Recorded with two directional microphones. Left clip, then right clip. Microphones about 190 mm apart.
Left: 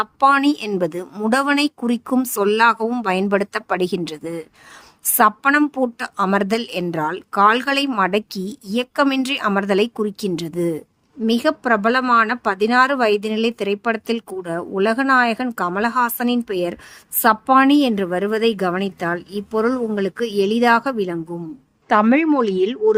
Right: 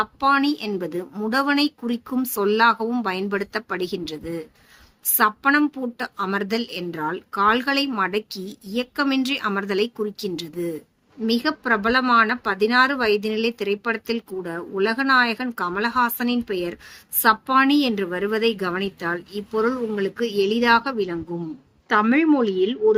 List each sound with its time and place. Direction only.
0.0 s speech: 60° left (ahead or behind)